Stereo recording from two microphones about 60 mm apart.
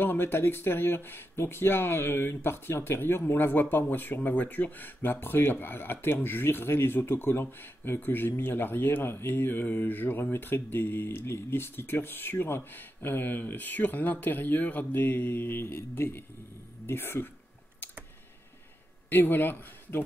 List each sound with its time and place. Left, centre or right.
0.0 s speech: left
19.0 s speech: left